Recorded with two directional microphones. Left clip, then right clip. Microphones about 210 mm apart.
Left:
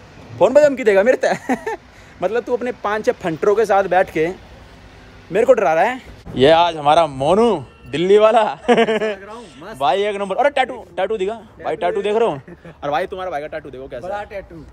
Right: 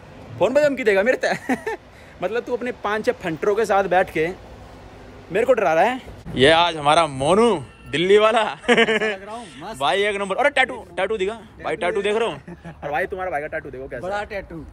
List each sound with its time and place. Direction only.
0.4 s speech: centre (ahead or behind)
6.3 s speech: 20° left (ahead or behind)
14.1 s speech: 35° right (ahead or behind)